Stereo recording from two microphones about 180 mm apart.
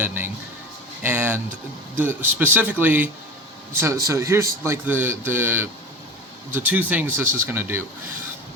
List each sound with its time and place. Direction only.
0.0 s speech: 10° right (ahead or behind)